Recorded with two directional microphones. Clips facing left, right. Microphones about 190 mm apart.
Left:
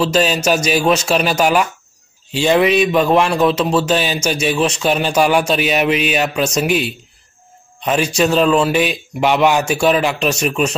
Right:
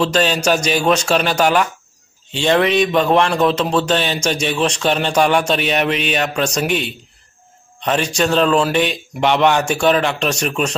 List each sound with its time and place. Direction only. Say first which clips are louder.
0.0 s a man's voice: left 1 dB; 5° left (ahead or behind)